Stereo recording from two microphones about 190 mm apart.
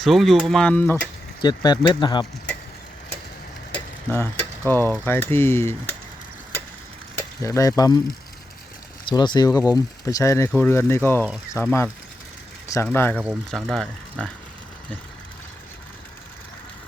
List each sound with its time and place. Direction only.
0.0 s speech: centre (ahead or behind)
1.4 s speech: 20° left (ahead or behind)
3.7 s mechanisms: 10° left (ahead or behind)
5.0 s speech: 10° left (ahead or behind)
7.2 s speech: 15° left (ahead or behind)
9.0 s speech: 25° left (ahead or behind)
13.2 s speech: centre (ahead or behind)